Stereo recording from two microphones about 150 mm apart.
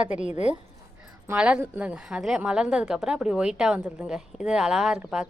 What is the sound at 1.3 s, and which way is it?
A woman's voice, 10° right (ahead or behind).